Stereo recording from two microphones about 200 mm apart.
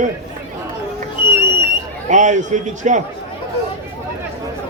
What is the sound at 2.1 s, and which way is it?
Speech, 35° right (ahead or behind).